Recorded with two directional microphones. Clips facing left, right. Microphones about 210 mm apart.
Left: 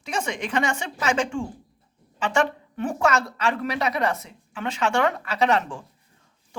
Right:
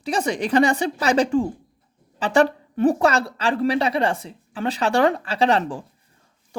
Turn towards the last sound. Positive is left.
turn(degrees=-35)  # may be behind; listen again after turning